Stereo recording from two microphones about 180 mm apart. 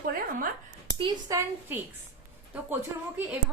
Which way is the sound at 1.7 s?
10° right (ahead or behind).